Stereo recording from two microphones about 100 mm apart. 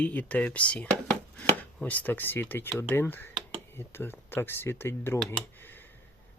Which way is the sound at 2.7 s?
20° left (ahead or behind).